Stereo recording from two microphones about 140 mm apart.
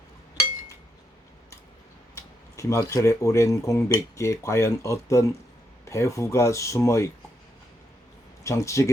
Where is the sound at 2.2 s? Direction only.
20° left (ahead or behind).